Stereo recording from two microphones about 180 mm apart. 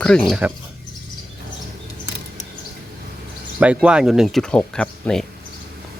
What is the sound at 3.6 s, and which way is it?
Speech, 5° right (ahead or behind).